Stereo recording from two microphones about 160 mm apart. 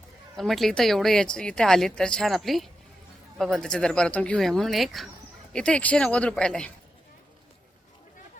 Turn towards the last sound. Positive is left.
turn(degrees=5)  # may be behind; listen again after turning